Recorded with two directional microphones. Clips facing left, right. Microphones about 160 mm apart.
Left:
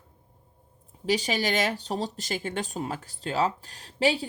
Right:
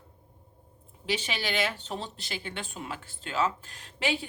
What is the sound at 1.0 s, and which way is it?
Speech, 40° left (ahead or behind).